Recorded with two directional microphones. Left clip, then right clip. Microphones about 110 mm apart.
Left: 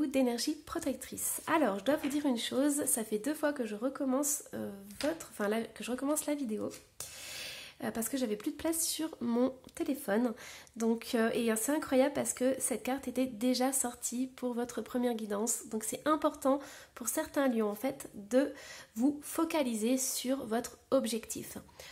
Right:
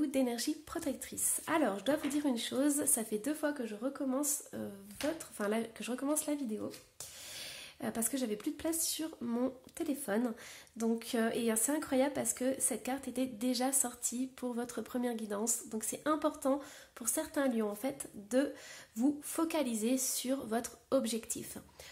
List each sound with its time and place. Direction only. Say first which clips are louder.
0.0 s speech: left 2 dB; 30° left (ahead or behind)
3.3 s speech: left 3 dB; 30° left (ahead or behind)
5.5 s speech: even; 10° left (ahead or behind)
7.3 s speech: left 2 dB; 15° left (ahead or behind)